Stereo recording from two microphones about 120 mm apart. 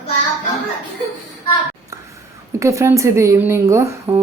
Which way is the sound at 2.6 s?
25° right (ahead or behind).